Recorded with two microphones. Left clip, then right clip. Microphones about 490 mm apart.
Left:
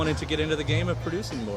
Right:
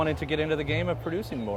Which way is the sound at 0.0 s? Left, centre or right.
Right.